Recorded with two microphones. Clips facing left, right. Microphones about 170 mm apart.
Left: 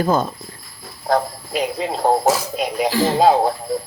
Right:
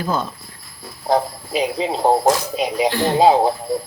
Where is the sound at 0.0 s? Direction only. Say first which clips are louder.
Left 4 dB; 45° left (ahead or behind).